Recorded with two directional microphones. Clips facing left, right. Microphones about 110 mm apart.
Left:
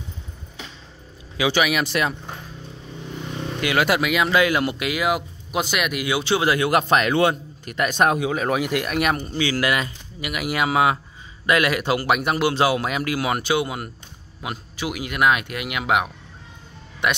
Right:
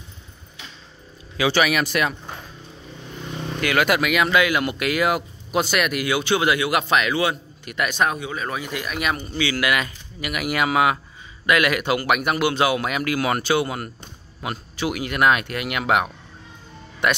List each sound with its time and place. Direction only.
1.3 s speech: 15° left (ahead or behind)
3.6 s speech: 25° left (ahead or behind)
4.8 s speech: 10° left (ahead or behind); by 6.6 s 30° left (ahead or behind)
6.6 s a man's voice: 40° left (ahead or behind)
7.7 s speech: 35° left (ahead or behind)
8.0 s speech: 85° left; by 13.3 s 25° left (ahead or behind)
13.3 s speech: 15° left (ahead or behind)